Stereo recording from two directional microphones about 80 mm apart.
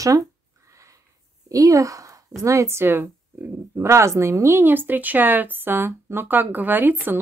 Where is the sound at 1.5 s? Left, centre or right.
Right.